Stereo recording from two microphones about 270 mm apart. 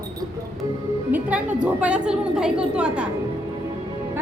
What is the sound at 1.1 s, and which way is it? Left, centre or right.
A woman's voice, centre.